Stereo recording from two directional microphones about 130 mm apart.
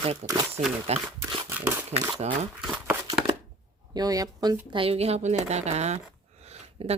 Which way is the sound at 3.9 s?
30° right (ahead or behind).